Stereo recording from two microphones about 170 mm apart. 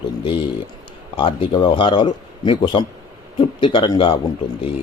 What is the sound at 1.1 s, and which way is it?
Speech, 30° left (ahead or behind).